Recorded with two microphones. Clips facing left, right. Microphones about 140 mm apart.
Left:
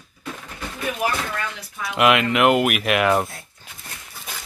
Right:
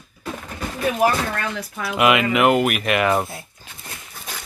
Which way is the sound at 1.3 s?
60° right (ahead or behind).